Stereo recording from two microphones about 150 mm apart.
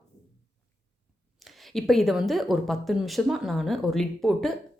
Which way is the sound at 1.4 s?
Centre (ahead or behind).